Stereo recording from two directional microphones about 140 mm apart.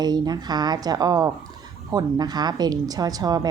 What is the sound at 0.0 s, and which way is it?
A woman's voice, 30° right (ahead or behind).